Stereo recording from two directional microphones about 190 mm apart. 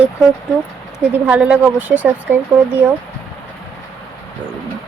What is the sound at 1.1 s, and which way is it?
A woman's voice, 5° right (ahead or behind).